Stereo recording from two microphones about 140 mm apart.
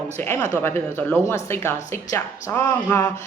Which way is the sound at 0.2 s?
15° left (ahead or behind).